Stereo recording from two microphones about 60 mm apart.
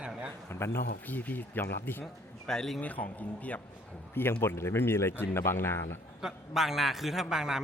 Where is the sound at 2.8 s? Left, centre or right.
Left.